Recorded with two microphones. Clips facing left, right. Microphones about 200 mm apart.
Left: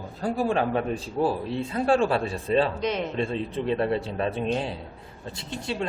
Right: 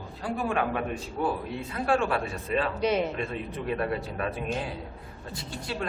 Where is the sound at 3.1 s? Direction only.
30° left (ahead or behind).